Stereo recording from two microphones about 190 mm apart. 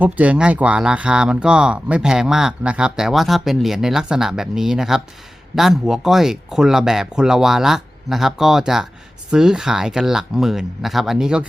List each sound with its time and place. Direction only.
0.0 s speech: 5° right (ahead or behind)